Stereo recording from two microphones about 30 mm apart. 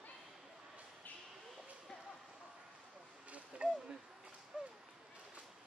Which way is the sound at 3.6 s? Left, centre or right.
Right.